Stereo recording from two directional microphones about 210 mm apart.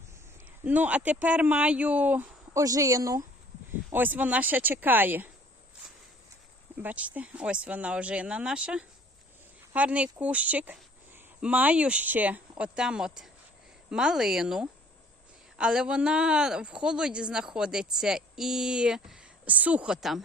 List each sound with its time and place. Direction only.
0.6 s speech: 5° right (ahead or behind)
6.8 s speech: 5° right (ahead or behind)